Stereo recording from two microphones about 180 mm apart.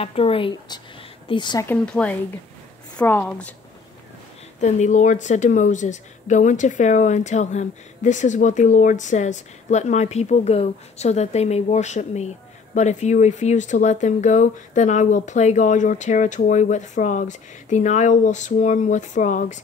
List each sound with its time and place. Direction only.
0.0 s speech: 30° left (ahead or behind)
1.7 s speech: 5° left (ahead or behind)
4.6 s speech: 40° left (ahead or behind)